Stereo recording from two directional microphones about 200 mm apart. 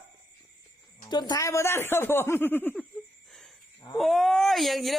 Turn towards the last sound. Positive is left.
turn(degrees=0)  # may be behind; listen again after turning